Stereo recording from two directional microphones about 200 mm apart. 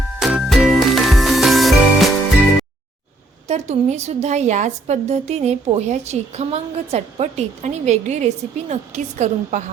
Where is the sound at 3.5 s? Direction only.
35° right (ahead or behind).